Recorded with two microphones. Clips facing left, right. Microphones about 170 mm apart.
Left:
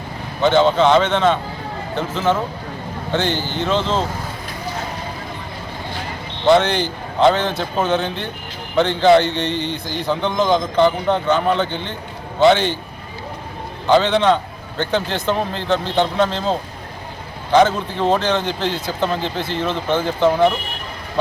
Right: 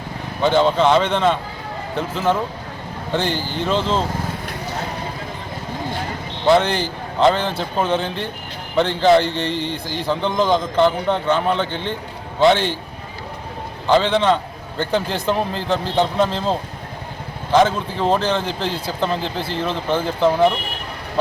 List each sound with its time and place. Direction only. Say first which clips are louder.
0.4 s a man's voice: left 2 dB; 5° right (ahead or behind)
3.3 s speech: left 1 dB; 35° right (ahead or behind)
3.6 s a man's voice: even; centre (ahead or behind)
6.4 s a man's voice: left 1 dB; 5° right (ahead or behind)
13.8 s a man's voice: left 1 dB; centre (ahead or behind)